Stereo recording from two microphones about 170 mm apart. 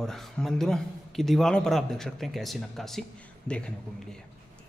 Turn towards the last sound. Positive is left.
turn(degrees=5)  # may be behind; listen again after turning